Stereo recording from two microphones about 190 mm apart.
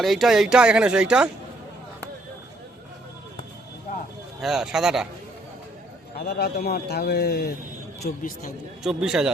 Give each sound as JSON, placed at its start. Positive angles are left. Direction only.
{"t": 0.0, "sound": "speech", "side_deg": 0}
{"t": 4.4, "sound": "speech", "side_deg": 0}
{"t": 6.1, "sound": "a man's voice", "side_deg": 55}
{"t": 8.8, "sound": "speech", "side_deg": -5}